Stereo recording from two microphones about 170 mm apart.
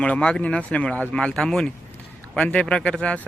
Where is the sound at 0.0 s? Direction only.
5° left (ahead or behind).